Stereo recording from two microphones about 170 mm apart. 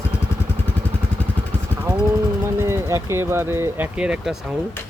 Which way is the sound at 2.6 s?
15° right (ahead or behind).